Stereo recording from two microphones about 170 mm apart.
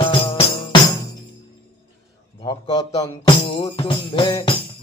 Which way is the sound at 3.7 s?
30° left (ahead or behind).